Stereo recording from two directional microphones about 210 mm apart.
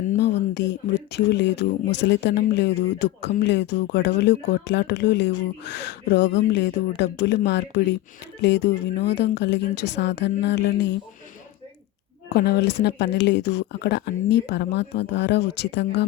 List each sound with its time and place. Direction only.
0.2 s speech: 55° left (ahead or behind)
12.3 s speech: 50° left (ahead or behind)